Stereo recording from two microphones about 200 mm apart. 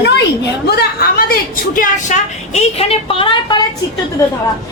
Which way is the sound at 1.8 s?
35° left (ahead or behind).